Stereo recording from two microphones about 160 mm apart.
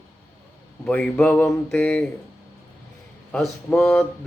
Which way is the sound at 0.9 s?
5° left (ahead or behind).